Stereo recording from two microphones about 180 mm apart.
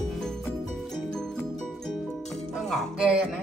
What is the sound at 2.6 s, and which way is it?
Speech, centre (ahead or behind).